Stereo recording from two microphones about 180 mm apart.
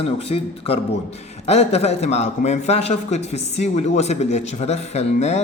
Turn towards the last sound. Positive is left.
turn(degrees=35)  # may be behind; listen again after turning